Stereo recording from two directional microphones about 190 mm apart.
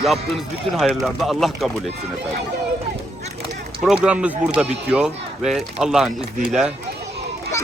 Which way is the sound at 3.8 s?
5° right (ahead or behind).